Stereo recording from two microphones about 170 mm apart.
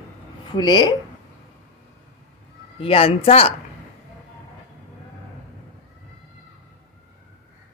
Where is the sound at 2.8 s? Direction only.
35° left (ahead or behind).